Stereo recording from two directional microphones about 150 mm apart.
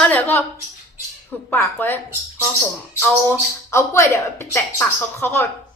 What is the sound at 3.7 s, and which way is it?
A woman's voice, 20° left (ahead or behind).